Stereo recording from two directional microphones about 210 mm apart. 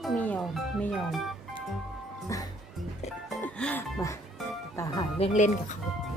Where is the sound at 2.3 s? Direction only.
15° left (ahead or behind).